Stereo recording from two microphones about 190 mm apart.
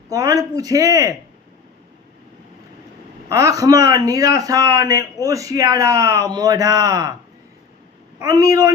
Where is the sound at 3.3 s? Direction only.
20° right (ahead or behind).